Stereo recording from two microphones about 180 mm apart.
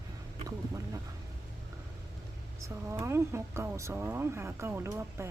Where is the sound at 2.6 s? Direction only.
15° right (ahead or behind).